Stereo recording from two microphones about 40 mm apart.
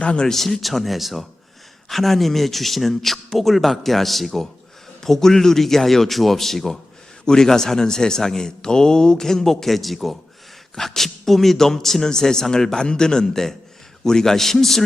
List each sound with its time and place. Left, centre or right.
0.0 s speech: left
0.3 s a man's voice: centre